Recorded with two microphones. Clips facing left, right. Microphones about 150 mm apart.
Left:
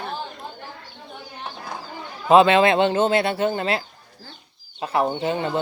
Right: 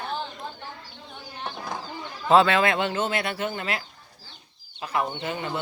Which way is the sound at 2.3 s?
20° left (ahead or behind).